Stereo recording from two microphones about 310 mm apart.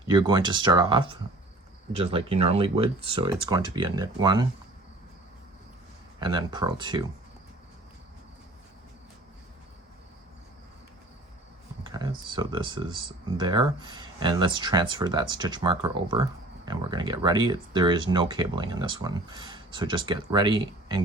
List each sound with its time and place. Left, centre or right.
0.1 s speech: centre
6.1 s speech: centre
11.9 s speech: centre